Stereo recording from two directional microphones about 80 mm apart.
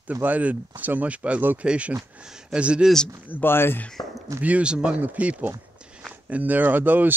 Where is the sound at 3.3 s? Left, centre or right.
Left.